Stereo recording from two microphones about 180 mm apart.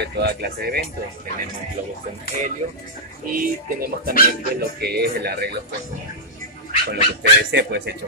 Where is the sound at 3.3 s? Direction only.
50° right (ahead or behind).